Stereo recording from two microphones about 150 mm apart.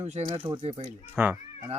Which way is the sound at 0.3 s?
30° right (ahead or behind).